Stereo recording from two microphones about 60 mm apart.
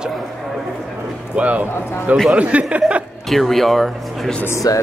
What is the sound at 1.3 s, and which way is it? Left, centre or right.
Speech, right.